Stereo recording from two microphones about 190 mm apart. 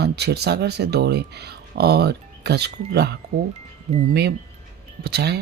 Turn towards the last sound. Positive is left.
turn(degrees=-60)  # may be behind; listen again after turning